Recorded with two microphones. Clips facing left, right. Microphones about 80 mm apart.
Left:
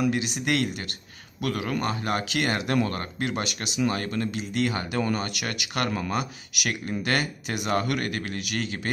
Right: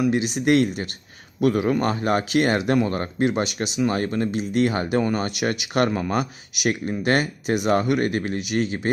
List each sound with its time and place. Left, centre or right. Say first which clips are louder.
0.1 s speech: right 7 dB; right
7.8 s speech: right 7 dB; right